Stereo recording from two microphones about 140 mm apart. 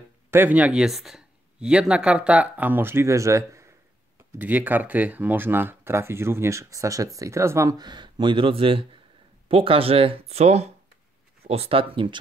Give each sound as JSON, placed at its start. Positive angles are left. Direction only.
{"t": 0.3, "sound": "speech", "side_deg": -10}